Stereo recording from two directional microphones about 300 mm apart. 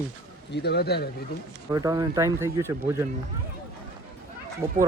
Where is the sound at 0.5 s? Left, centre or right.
Left.